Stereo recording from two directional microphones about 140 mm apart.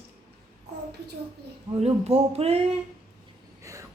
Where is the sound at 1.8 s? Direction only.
50° right (ahead or behind).